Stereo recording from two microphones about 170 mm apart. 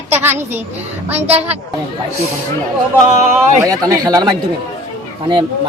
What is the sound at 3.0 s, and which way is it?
Speech, 45° right (ahead or behind).